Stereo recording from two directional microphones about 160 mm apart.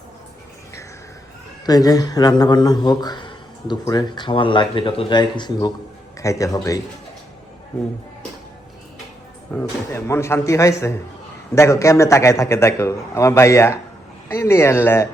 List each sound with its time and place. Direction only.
1.6 s a man's voice: 25° left (ahead or behind)
9.5 s a man's voice: 10° left (ahead or behind)